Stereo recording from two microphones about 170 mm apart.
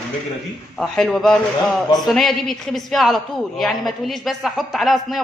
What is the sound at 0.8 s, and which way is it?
A woman's voice, 5° left (ahead or behind).